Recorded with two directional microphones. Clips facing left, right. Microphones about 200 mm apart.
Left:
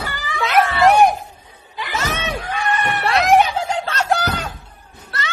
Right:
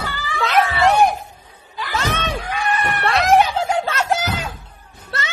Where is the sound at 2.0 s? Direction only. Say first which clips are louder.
Right 1 dB; 10° left (ahead or behind).